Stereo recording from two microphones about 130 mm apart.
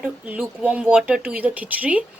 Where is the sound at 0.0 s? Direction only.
10° right (ahead or behind).